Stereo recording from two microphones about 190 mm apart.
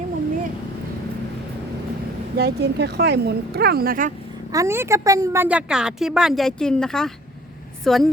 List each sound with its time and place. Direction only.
2.4 s speech: 60° right (ahead or behind)
4.5 s a woman's voice: 15° right (ahead or behind); by 8.1 s centre (ahead or behind)